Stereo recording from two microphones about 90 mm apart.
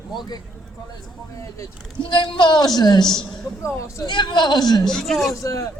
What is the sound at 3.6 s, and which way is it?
Speech, 35° left (ahead or behind).